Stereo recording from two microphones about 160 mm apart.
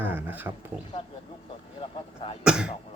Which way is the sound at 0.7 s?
5° right (ahead or behind).